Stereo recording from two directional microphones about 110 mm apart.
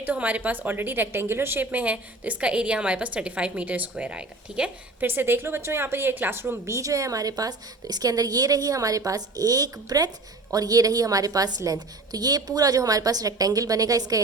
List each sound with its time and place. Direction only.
0.0 s a woman's voice: 15° right (ahead or behind); by 14.2 s 30° right (ahead or behind)